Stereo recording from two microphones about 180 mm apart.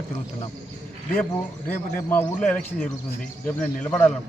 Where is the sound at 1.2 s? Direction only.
10° left (ahead or behind).